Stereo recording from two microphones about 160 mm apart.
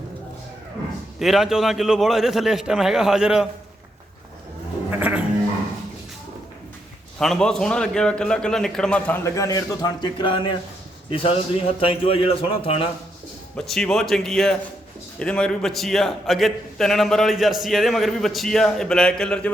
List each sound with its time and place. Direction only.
1.2 s a man's voice: centre (ahead or behind)
4.9 s sheep: 10° right (ahead or behind)
7.2 s a man's voice: 5° left (ahead or behind)
9.2 s a man's voice: 20° left (ahead or behind)
13.6 s a man's voice: 5° left (ahead or behind)